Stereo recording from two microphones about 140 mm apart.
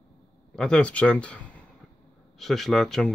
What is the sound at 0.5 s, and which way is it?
Speech, 5° left (ahead or behind).